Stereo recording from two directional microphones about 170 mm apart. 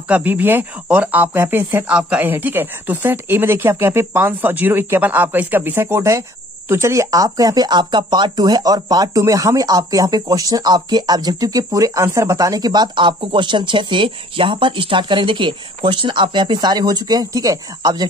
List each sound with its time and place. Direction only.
0.1 s speech: 10° right (ahead or behind)